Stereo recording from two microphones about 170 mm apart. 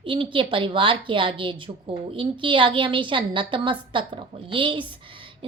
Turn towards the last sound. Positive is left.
turn(degrees=-30)  # may be behind; listen again after turning